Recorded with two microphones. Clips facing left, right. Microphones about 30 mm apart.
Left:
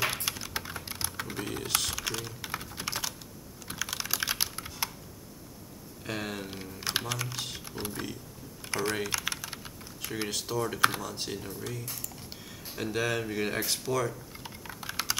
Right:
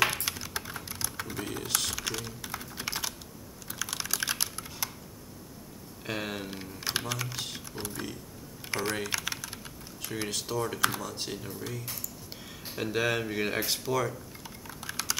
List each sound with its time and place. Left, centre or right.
0.2 s typing: centre
0.8 s typing: left
1.2 s speech: centre
2.4 s typing: centre
2.7 s computer keyboard: centre
3.7 s typing: centre
6.0 s speech: centre
14.7 s computer keyboard: centre